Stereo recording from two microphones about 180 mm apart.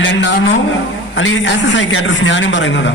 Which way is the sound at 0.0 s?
90° left.